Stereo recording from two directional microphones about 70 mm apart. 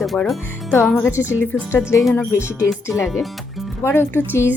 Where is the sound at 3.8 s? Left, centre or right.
Left.